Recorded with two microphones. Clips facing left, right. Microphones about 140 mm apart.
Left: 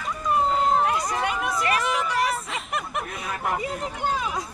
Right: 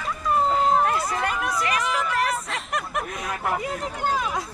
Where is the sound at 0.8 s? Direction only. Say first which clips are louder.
Even; centre (ahead or behind).